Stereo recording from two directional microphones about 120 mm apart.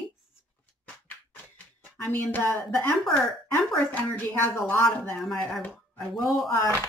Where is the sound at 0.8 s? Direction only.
15° left (ahead or behind).